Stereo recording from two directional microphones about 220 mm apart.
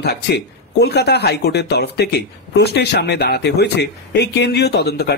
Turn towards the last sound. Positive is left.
turn(degrees=45)  # may be behind; listen again after turning